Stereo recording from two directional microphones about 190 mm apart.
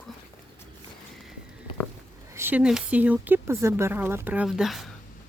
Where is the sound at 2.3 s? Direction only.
10° right (ahead or behind).